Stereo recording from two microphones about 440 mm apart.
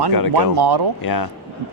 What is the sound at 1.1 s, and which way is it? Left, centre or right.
Speech, left.